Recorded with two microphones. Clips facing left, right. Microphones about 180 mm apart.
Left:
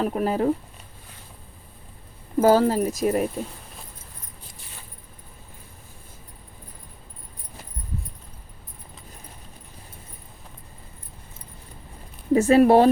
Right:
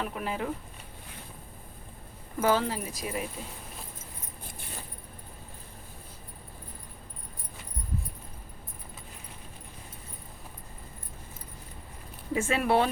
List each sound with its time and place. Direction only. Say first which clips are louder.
0.0 s speech: left 10 dB; 40° left (ahead or behind)
2.4 s speech: left 9 dB; 40° left (ahead or behind)
12.3 s speech: left 11 dB; 40° left (ahead or behind)